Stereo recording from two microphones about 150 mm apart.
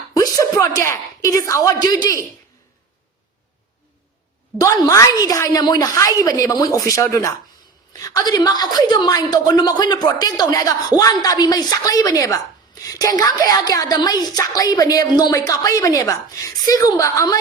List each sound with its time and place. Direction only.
0.2 s a woman's voice: 20° left (ahead or behind)
4.6 s a woman's voice: 20° left (ahead or behind)